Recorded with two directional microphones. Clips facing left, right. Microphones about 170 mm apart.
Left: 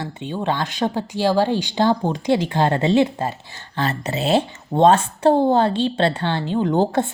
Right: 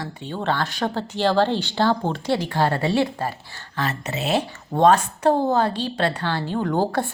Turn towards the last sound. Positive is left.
turn(degrees=20)  # may be behind; listen again after turning